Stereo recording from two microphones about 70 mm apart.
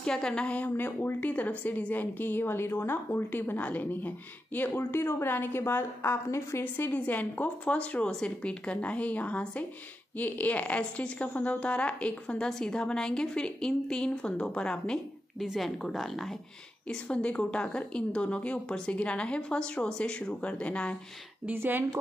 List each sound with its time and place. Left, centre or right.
0.0 s a woman's voice: centre; by 6.6 s left
6.6 s a woman's voice: left
15.3 s a woman's voice: centre
16.8 s a woman's voice: centre
21.5 s speech: right